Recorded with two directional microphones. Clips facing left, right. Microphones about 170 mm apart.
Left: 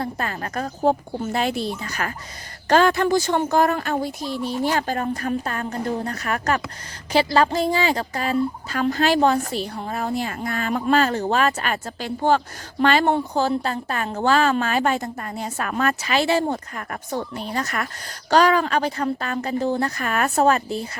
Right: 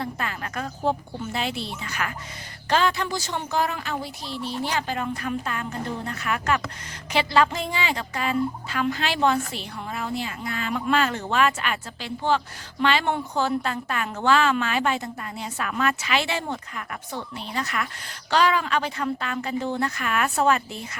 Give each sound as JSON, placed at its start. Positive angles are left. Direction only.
{"t": 0.0, "sound": "fowl", "side_deg": 40}
{"t": 2.6, "sound": "speech", "side_deg": 50}
{"t": 6.1, "sound": "fowl", "side_deg": 40}